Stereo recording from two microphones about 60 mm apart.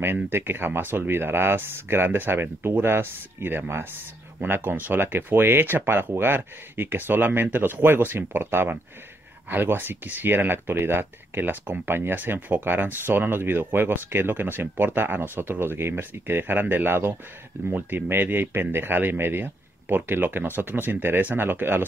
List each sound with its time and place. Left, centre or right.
0.0 s speech: right